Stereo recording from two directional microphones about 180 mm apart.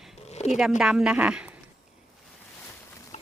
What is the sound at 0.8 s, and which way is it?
Speech, 5° right (ahead or behind).